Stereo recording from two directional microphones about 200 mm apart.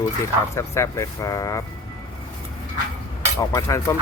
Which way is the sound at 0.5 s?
15° left (ahead or behind).